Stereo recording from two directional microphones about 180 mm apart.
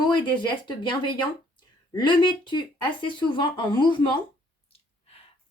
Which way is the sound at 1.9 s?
25° left (ahead or behind).